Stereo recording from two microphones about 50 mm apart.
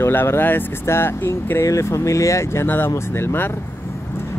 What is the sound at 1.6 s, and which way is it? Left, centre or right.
Speech, left.